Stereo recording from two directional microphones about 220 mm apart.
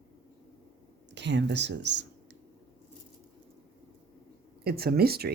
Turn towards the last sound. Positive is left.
turn(degrees=-45)  # may be behind; listen again after turning